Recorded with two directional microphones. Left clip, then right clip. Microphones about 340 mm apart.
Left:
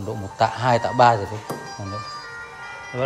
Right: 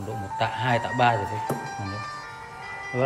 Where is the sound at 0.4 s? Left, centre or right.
Centre.